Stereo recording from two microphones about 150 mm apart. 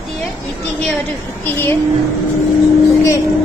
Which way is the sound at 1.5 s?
15° left (ahead or behind).